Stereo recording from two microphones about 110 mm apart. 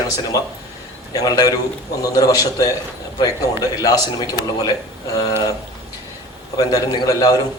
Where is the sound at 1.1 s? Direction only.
35° left (ahead or behind).